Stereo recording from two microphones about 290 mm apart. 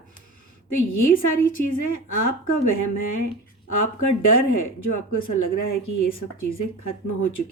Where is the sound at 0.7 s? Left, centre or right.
Left.